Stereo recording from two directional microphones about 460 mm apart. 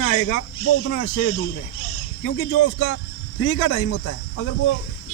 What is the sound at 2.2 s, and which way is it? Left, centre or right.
Speech, left.